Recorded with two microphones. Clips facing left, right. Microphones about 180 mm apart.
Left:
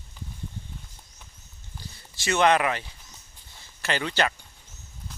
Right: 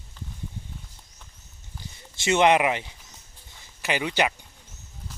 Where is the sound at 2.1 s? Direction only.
20° right (ahead or behind).